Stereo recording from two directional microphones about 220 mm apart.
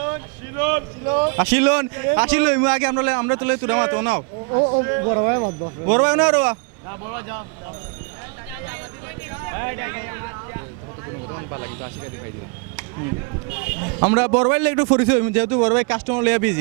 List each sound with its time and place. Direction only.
0.6 s a man's voice: 15° right (ahead or behind)
4.5 s speech: 25° right (ahead or behind)
5.9 s a man's voice: 10° right (ahead or behind)
9.5 s a man's voice: 15° right (ahead or behind)
11.3 s a sound: 25° right (ahead or behind)
13.6 s a man's voice: 10° right (ahead or behind)